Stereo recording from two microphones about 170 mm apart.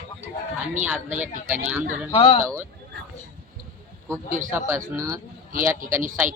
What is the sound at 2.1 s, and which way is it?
Speech, 35° left (ahead or behind).